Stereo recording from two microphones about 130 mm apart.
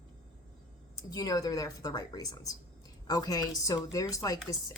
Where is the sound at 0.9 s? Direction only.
30° left (ahead or behind).